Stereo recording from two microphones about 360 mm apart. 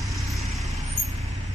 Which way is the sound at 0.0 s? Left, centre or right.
Centre.